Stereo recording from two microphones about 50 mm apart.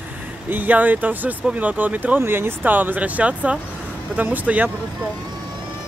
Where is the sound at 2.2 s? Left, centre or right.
Right.